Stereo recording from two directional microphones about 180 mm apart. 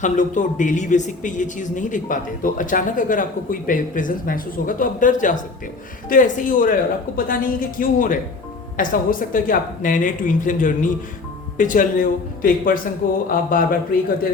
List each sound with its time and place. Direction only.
0.0 s a man's voice: 45° left (ahead or behind)